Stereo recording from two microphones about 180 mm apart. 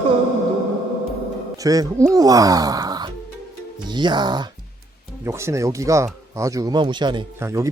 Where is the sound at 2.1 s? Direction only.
20° right (ahead or behind).